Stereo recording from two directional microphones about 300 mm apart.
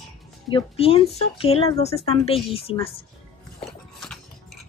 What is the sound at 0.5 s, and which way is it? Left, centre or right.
Speech, centre.